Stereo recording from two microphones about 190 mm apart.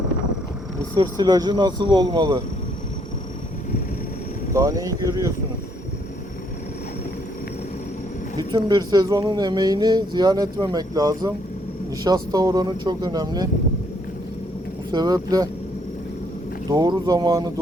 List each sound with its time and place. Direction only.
0.9 s speech: 20° right (ahead or behind)
4.5 s speech: 15° right (ahead or behind)
8.4 s speech: 20° right (ahead or behind)
14.9 s speech: 20° right (ahead or behind)
16.6 s speech: 20° right (ahead or behind)